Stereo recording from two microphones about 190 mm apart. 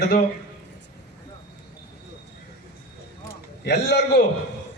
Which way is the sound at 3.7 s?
65° left (ahead or behind).